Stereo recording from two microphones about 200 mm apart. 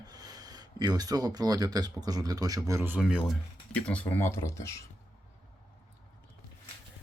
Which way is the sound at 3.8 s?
5° left (ahead or behind).